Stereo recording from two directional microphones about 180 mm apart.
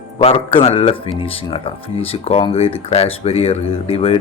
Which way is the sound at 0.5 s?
30° left (ahead or behind).